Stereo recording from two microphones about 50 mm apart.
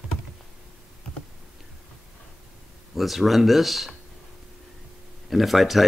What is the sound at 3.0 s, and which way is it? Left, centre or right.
Speech, centre.